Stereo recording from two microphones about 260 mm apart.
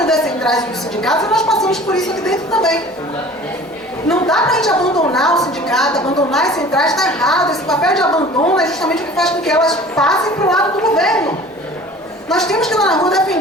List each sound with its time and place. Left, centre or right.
0.1 s a sound: centre
1.3 s a woman's voice: centre
4.1 s a woman's voice: centre
8.0 s a woman's voice: centre
8.5 s a woman's voice: centre
12.3 s a woman's voice: centre